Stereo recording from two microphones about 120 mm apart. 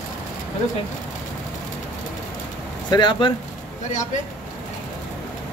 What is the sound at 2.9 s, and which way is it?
Speech, 40° left (ahead or behind).